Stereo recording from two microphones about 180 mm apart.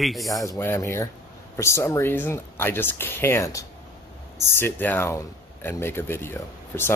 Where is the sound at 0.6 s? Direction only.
15° left (ahead or behind).